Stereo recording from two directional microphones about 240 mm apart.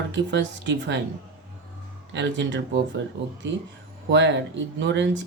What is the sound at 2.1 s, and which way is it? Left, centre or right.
Speech, right.